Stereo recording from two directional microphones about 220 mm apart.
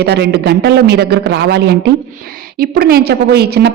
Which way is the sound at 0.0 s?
50° right (ahead or behind).